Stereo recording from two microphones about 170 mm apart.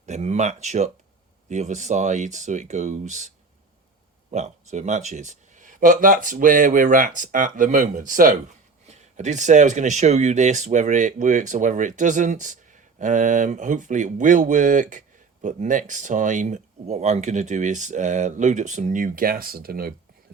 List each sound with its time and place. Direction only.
0.0 s speech: 40° right (ahead or behind); by 19.9 s 60° right (ahead or behind)